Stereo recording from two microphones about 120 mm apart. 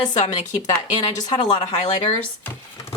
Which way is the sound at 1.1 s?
40° left (ahead or behind).